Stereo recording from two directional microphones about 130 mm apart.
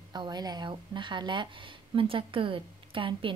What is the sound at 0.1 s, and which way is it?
A woman's voice, 35° right (ahead or behind).